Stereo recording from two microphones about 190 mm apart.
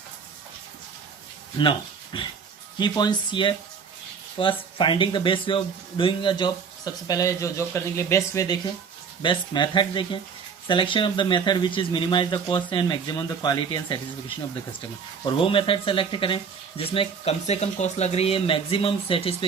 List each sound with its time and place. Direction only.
2.1 s speech: 25° left (ahead or behind)